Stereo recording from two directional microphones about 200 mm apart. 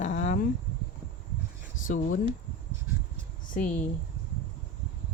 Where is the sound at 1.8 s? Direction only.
40° left (ahead or behind).